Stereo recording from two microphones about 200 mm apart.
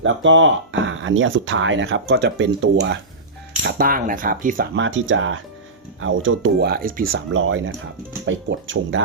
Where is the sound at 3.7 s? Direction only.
45° right (ahead or behind).